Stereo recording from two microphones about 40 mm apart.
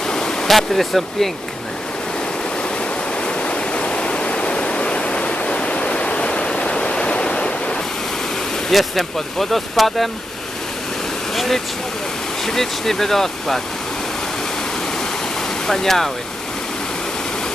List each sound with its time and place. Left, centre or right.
0.1 s waterfall: centre
0.4 s speech: centre
3.2 s waterfall: left
8.7 s speech: centre
11.3 s speech: centre
15.6 s speech: centre